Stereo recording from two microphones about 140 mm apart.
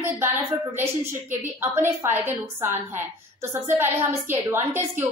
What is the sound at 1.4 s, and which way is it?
A woman's voice, 15° right (ahead or behind).